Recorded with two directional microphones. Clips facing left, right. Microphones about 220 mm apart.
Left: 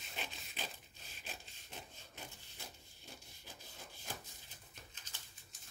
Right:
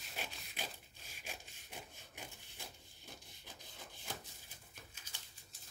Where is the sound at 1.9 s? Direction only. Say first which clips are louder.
Even; 15° right (ahead or behind).